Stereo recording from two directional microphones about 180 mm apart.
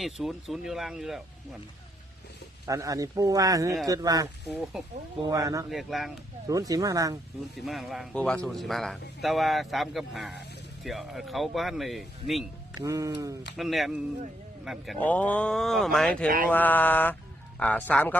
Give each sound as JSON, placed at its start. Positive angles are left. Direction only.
{"t": 0.0, "sound": "a man's voice", "side_deg": 0}
{"t": 2.6, "sound": "speech", "side_deg": -20}
{"t": 4.4, "sound": "a man's voice", "side_deg": 0}
{"t": 5.2, "sound": "speech", "side_deg": -20}
{"t": 5.7, "sound": "a man's voice", "side_deg": 0}
{"t": 6.5, "sound": "speech", "side_deg": -20}
{"t": 7.6, "sound": "a man's voice", "side_deg": 0}
{"t": 12.7, "sound": "speech", "side_deg": -20}
{"t": 13.6, "sound": "a man's voice", "side_deg": 0}
{"t": 16.5, "sound": "mantra", "side_deg": 10}